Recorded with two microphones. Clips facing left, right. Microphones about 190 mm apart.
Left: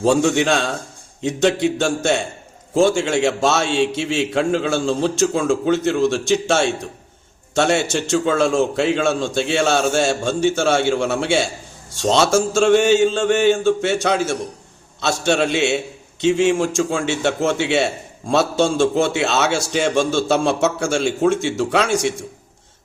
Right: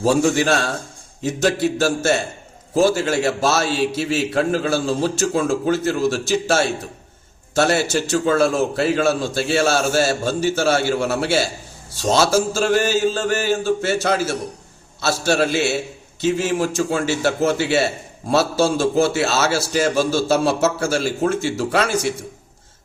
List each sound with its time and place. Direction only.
0.0 s a man's voice: 5° right (ahead or behind)